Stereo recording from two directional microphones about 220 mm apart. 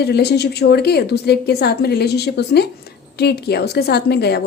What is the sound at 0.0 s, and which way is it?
A woman's voice, 45° left (ahead or behind).